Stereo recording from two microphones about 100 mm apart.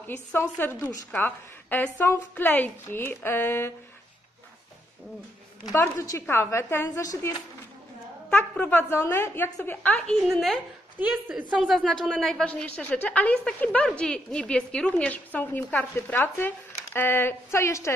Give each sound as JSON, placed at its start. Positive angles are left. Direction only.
{"t": 0.0, "sound": "a woman's voice", "side_deg": 20}
{"t": 5.7, "sound": "a woman's voice", "side_deg": 30}
{"t": 8.3, "sound": "a woman's voice", "side_deg": 15}
{"t": 10.2, "sound": "speech", "side_deg": 0}
{"t": 11.0, "sound": "a woman's voice", "side_deg": -15}
{"t": 11.5, "sound": "a woman's voice", "side_deg": 0}